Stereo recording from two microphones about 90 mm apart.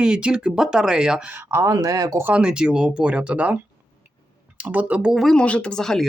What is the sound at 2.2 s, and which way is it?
Speech, 10° right (ahead or behind).